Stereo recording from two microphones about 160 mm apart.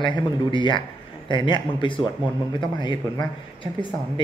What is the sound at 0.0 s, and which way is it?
Speech, 30° left (ahead or behind).